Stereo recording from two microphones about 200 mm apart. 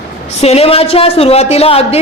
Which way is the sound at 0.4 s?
30° left (ahead or behind).